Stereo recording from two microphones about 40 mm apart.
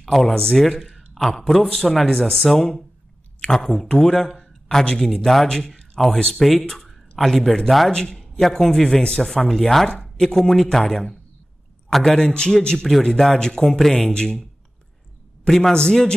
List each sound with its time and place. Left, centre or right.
0.0 s speech: centre
0.9 s a sound: centre
1.6 s speech: centre
4.9 s speech: centre
6.7 s a man's voice: centre
15.4 s a man's voice: centre